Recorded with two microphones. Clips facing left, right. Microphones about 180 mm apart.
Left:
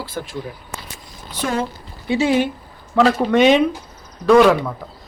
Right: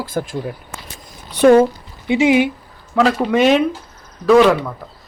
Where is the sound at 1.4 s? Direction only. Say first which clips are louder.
Right 13 dB; 60° right (ahead or behind).